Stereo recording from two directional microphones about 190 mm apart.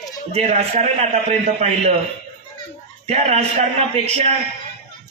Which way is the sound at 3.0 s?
35° right (ahead or behind).